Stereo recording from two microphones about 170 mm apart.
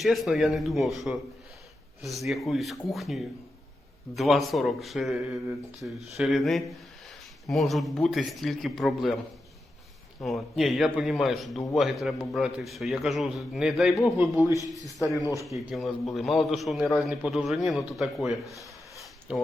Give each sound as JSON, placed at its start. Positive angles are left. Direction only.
{"t": 0.0, "sound": "a man's voice", "side_deg": 0}
{"t": 10.2, "sound": "a man's voice", "side_deg": 0}
{"t": 15.0, "sound": "speech", "side_deg": 20}
{"t": 15.4, "sound": "a man's voice", "side_deg": 0}